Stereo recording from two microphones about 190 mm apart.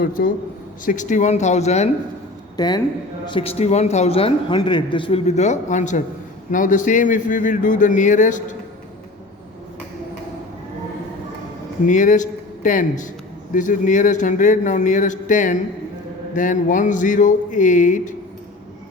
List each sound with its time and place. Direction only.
0.0 s a man's voice: 45° left (ahead or behind)
2.6 s a woman's voice: 20° left (ahead or behind); by 8.4 s 40° left (ahead or behind)
11.9 s a man's voice: 40° left (ahead or behind)